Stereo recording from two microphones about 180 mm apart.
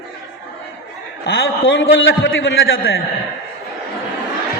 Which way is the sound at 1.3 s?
75° left (ahead or behind).